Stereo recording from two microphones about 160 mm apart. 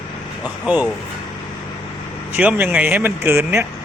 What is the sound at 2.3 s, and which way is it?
Speech, 10° right (ahead or behind).